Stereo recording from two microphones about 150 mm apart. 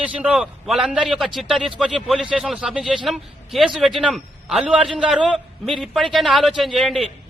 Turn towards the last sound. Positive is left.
turn(degrees=0)  # may be behind; listen again after turning